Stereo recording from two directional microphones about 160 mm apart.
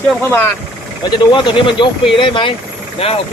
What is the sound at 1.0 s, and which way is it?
Speech, 30° left (ahead or behind).